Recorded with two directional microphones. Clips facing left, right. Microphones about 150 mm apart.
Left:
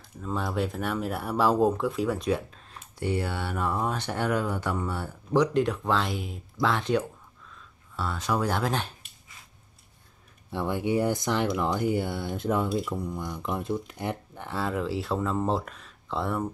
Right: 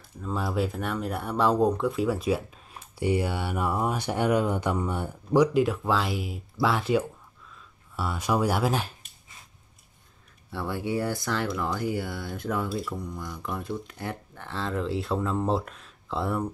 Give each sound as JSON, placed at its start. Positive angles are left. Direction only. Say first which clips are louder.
{"t": 0.2, "sound": "speech", "louder": "right 1 dB", "side_deg": 0}
{"t": 10.5, "sound": "speech", "louder": "left 3 dB", "side_deg": 20}